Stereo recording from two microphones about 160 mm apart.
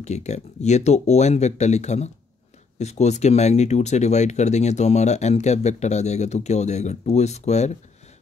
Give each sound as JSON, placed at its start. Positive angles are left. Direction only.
{"t": 0.0, "sound": "speech", "side_deg": 45}